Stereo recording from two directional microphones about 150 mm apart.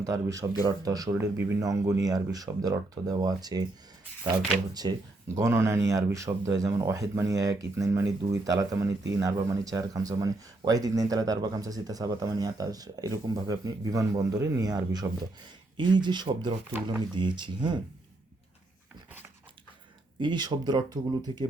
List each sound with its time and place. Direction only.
0.0 s speech: 20° right (ahead or behind)
1.1 s speech: 15° right (ahead or behind); by 17.7 s 30° right (ahead or behind)
20.1 s speech: 30° right (ahead or behind)